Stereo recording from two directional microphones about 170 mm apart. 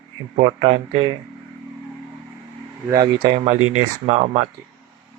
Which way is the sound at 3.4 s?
40° right (ahead or behind).